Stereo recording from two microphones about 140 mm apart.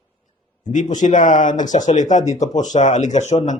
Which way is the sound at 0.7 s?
65° left (ahead or behind).